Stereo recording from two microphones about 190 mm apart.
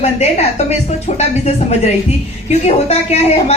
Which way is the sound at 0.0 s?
35° left (ahead or behind).